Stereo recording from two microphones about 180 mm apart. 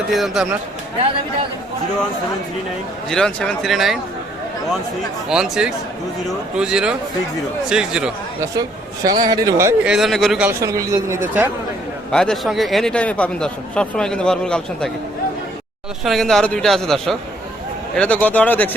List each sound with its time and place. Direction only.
0.1 s speech: centre (ahead or behind)
3.1 s speech: 5° left (ahead or behind)
5.3 s speech: 5° right (ahead or behind)
9.0 s a man's voice: 20° right (ahead or behind)
9.8 s speech: centre (ahead or behind)
10.4 s speech: 15° right (ahead or behind)
12.1 s speech: 5° left (ahead or behind)
16.0 s speech: centre (ahead or behind)